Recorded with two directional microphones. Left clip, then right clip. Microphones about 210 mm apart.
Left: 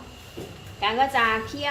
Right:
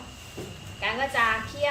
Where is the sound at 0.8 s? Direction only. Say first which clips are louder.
Left 3 dB; 45° left (ahead or behind).